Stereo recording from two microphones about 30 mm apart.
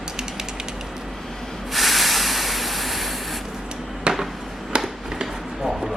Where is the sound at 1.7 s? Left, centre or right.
Centre.